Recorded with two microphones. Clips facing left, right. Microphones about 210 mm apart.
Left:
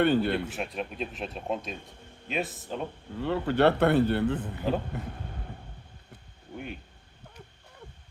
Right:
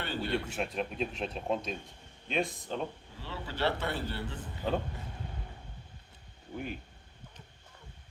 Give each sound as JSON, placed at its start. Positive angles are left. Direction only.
{"t": 0.0, "sound": "a man's voice", "side_deg": 55}
{"t": 0.4, "sound": "speech", "side_deg": 0}
{"t": 3.2, "sound": "a man's voice", "side_deg": 55}
{"t": 4.7, "sound": "speech", "side_deg": 0}